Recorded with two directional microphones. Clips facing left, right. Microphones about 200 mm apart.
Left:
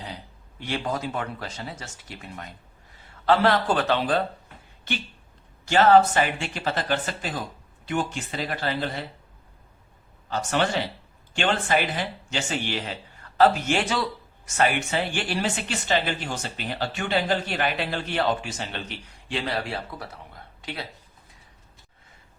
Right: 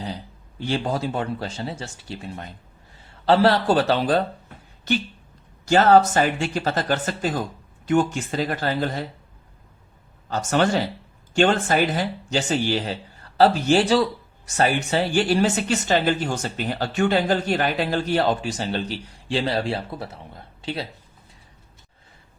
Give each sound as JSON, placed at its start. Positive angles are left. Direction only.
{"t": 0.6, "sound": "speech", "side_deg": -30}
{"t": 10.2, "sound": "speech", "side_deg": -40}